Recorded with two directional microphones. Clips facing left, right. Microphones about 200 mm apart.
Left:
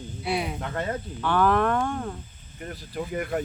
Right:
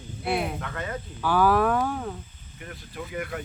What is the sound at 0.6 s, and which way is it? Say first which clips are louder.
Speech: left 4 dB; 35° left (ahead or behind).